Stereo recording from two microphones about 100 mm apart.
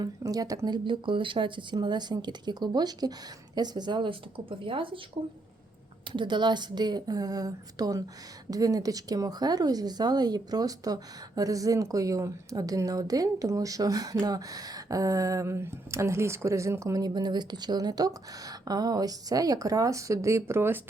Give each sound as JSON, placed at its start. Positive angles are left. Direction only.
{"t": 0.2, "sound": "speech", "side_deg": -35}
{"t": 5.2, "sound": "speech", "side_deg": -80}
{"t": 6.1, "sound": "speech", "side_deg": -50}